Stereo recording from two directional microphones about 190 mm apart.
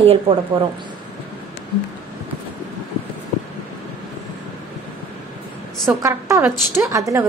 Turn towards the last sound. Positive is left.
turn(degrees=-15)  # may be behind; listen again after turning